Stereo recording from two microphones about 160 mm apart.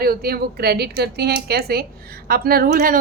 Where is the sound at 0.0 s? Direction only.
70° right (ahead or behind).